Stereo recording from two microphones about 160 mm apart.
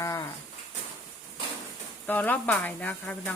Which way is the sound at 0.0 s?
20° left (ahead or behind).